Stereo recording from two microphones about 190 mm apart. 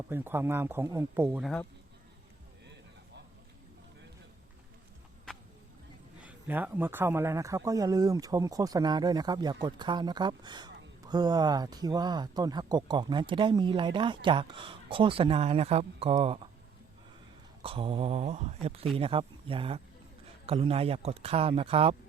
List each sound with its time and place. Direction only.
0.1 s speech: 10° right (ahead or behind)
6.2 s speech: 10° right (ahead or behind); by 16.5 s 30° right (ahead or behind)
17.6 s speech: 30° right (ahead or behind)